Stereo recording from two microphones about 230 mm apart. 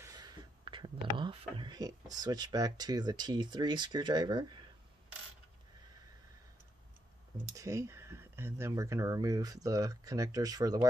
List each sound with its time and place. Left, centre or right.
0.0 s a sound: centre
1.1 s speech: centre
7.5 s speech: centre